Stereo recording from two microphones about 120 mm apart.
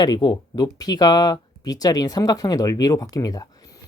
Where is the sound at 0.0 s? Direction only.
35° left (ahead or behind).